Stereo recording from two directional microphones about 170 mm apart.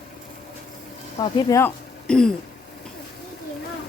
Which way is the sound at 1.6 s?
5° left (ahead or behind).